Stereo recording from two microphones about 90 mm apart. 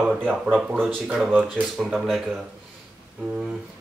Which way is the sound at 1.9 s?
Centre (ahead or behind).